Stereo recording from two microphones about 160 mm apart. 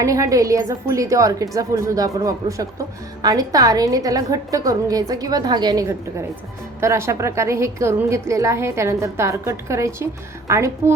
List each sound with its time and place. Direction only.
0.0 s a woman's voice: 20° right (ahead or behind)